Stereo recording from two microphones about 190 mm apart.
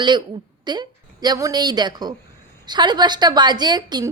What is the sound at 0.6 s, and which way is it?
A woman's voice, 20° right (ahead or behind).